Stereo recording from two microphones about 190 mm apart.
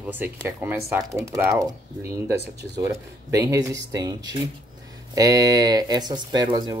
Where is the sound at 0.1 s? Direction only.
10° right (ahead or behind).